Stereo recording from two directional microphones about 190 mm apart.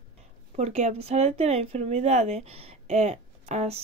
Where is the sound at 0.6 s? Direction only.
35° right (ahead or behind).